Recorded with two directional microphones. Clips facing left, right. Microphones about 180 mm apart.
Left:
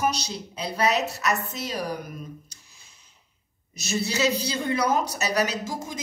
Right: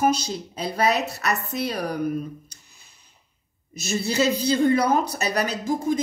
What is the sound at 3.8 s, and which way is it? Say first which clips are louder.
Speech: right 2 dB; 55° right (ahead or behind).